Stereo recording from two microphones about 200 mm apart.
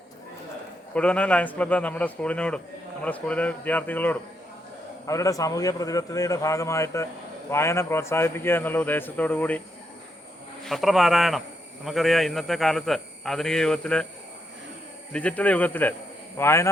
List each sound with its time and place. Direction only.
0.9 s a man's voice: 5° left (ahead or behind)
10.7 s a man's voice: centre (ahead or behind)
15.1 s a man's voice: 5° left (ahead or behind)